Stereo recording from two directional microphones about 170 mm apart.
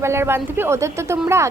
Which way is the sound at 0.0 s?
15° right (ahead or behind).